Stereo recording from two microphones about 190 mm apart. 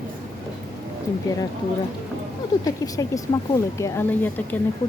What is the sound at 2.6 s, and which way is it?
A woman's voice, 20° left (ahead or behind).